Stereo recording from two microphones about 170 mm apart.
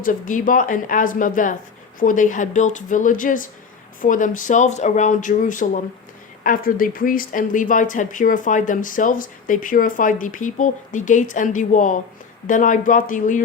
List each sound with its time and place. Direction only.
0.0 s speech: 50° left (ahead or behind)